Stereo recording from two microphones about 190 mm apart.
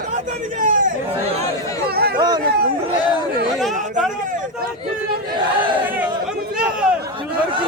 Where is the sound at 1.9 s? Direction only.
55° right (ahead or behind).